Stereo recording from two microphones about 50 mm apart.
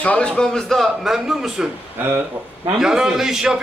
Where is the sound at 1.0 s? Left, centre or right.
Centre.